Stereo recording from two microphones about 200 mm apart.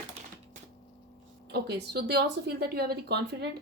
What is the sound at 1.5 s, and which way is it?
Speech, 55° right (ahead or behind).